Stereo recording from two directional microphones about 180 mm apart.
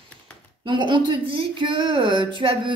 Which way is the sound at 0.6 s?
25° right (ahead or behind).